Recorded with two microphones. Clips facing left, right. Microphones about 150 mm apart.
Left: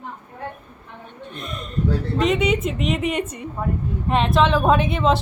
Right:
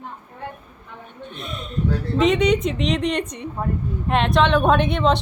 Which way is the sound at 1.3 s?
Centre (ahead or behind).